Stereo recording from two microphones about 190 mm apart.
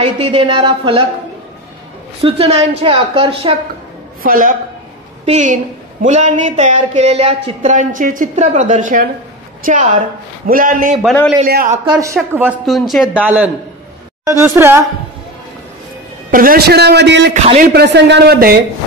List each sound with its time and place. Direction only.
0.0 s a woman's voice: 30° right (ahead or behind)
2.2 s a woman's voice: 30° right (ahead or behind)
4.2 s a man's voice: 45° right (ahead or behind)
12.2 s speech: 5° right (ahead or behind)
16.3 s a man's voice: 50° right (ahead or behind); by 17.3 s 65° right (ahead or behind)
17.3 s speech: 40° right (ahead or behind)
17.7 s a man's voice: 65° right (ahead or behind)